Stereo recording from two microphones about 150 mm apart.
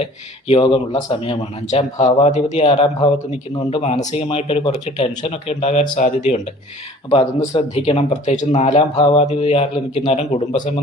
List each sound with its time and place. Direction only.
0.0 s speech: 40° left (ahead or behind)
1.2 s speech: 40° left (ahead or behind)
7.1 s speech: 35° left (ahead or behind)
7.9 s speech: 50° left (ahead or behind)